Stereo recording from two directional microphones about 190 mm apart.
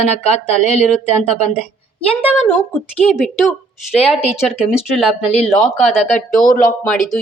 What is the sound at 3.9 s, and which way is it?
Speech, 30° left (ahead or behind).